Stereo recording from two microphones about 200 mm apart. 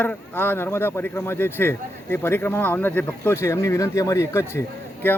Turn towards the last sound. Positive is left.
turn(degrees=10)  # may be behind; listen again after turning